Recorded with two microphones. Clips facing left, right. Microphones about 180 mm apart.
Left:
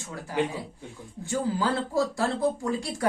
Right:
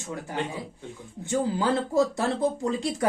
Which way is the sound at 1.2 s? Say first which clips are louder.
Right 2 dB; 20° right (ahead or behind).